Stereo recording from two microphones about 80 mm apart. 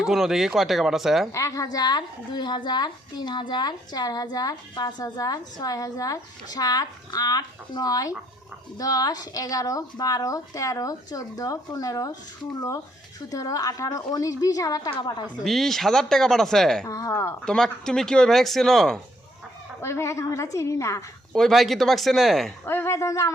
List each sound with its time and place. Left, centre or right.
0.0 s speech: centre
1.3 s a woman's voice: left
13.3 s speech: left
14.8 s a woman's voice: left
15.4 s speech: centre
16.8 s a woman's voice: left
17.4 s speech: centre
19.8 s a woman's voice: left
21.3 s speech: centre
22.6 s a woman's voice: left